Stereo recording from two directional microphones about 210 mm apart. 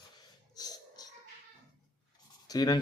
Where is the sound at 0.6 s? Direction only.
20° left (ahead or behind).